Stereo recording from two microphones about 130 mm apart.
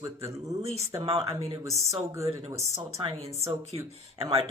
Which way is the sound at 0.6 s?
55° right (ahead or behind).